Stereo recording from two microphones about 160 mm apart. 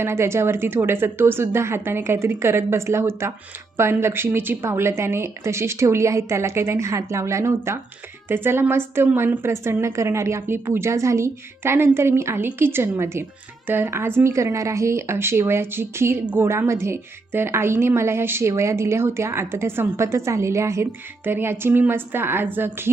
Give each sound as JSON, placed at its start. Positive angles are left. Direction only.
{"t": 0.0, "sound": "speech", "side_deg": -15}